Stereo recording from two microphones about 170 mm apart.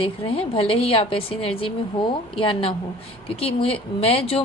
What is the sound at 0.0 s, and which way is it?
A woman's voice, 35° left (ahead or behind).